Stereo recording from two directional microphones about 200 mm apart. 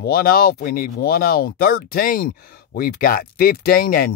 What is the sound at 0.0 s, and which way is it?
Speech, 45° left (ahead or behind).